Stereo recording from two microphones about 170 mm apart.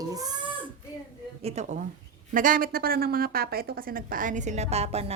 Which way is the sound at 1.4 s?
40° right (ahead or behind).